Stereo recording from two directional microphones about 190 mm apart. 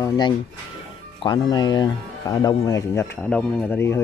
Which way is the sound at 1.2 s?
20° left (ahead or behind).